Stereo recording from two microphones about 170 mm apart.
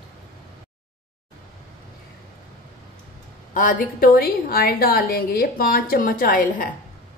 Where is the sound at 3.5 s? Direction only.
55° left (ahead or behind).